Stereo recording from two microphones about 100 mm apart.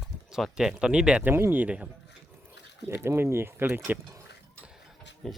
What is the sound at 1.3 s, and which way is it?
Speech, 20° right (ahead or behind).